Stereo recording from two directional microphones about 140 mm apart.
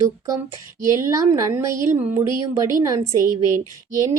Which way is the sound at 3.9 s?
20° right (ahead or behind).